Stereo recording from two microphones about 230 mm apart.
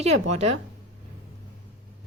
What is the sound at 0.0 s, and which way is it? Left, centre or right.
Speech, right.